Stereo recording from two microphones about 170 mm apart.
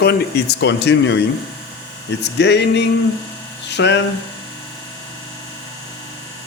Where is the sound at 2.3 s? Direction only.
90° left.